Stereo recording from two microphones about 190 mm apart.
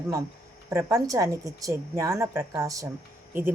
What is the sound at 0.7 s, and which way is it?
A woman's voice, 15° right (ahead or behind).